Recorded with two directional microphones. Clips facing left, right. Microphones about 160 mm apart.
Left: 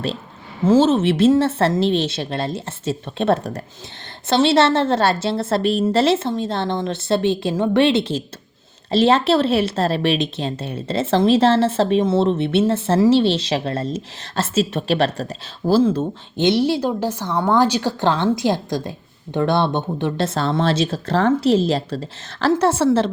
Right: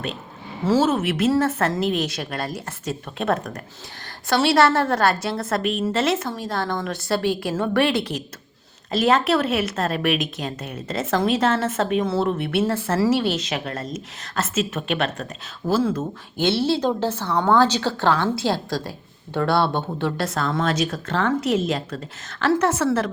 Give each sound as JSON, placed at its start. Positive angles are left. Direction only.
{"t": 0.6, "sound": "a woman's voice", "side_deg": 25}
{"t": 16.5, "sound": "a woman's voice", "side_deg": 15}